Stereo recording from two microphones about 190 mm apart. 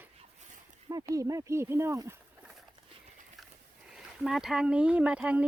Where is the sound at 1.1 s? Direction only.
15° right (ahead or behind).